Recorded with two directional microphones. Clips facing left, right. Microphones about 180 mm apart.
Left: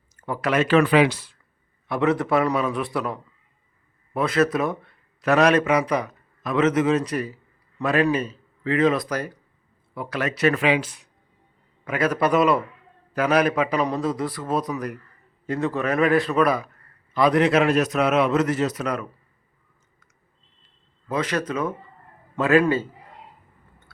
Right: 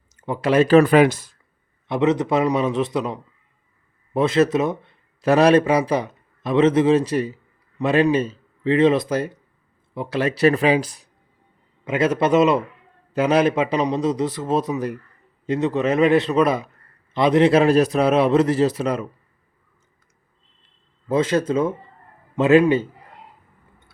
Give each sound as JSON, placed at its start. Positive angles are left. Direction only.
{"t": 0.2, "sound": "a man's voice", "side_deg": -25}
{"t": 1.9, "sound": "a man's voice", "side_deg": -20}
{"t": 11.9, "sound": "a man's voice", "side_deg": -25}
{"t": 21.1, "sound": "a man's voice", "side_deg": -25}